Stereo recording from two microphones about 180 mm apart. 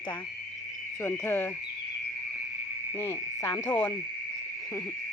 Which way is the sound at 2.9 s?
15° left (ahead or behind).